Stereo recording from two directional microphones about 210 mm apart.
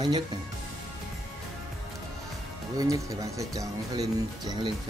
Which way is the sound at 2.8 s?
15° right (ahead or behind).